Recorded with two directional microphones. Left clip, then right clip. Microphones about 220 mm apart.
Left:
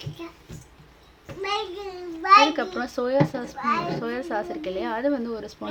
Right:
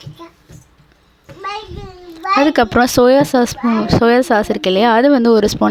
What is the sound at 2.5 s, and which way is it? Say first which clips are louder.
Speech: right 16 dB; 45° right (ahead or behind).